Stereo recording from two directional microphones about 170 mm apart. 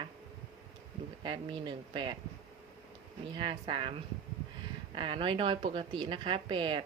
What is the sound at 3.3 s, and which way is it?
Speech, 30° right (ahead or behind).